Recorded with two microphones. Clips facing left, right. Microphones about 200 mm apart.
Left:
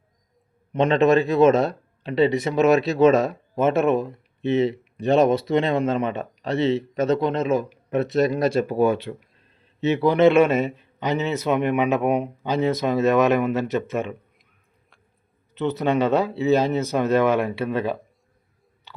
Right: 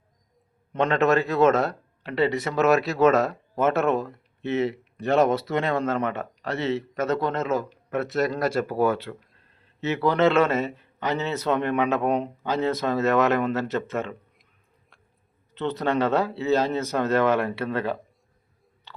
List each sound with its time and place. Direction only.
0.7 s a man's voice: 20° left (ahead or behind)
15.5 s a man's voice: 10° left (ahead or behind)